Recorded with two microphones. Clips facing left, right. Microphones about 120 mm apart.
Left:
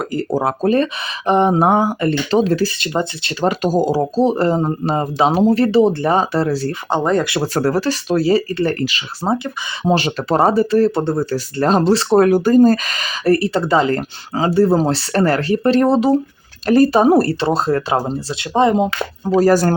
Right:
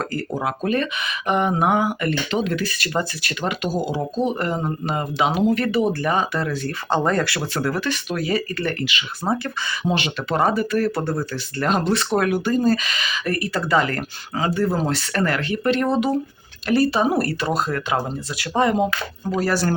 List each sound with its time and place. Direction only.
0.0 s speech: 15° left (ahead or behind)
0.3 s speech: 35° left (ahead or behind)
3.4 s speech: 40° left (ahead or behind)
6.9 s speech: 15° left (ahead or behind)
7.4 s speech: 40° left (ahead or behind)
9.2 s speech: 20° left (ahead or behind)
9.8 s speech: 40° left (ahead or behind)
16.6 s speech: 45° left (ahead or behind)